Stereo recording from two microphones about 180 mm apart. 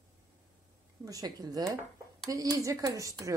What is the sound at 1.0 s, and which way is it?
Speech, 20° right (ahead or behind).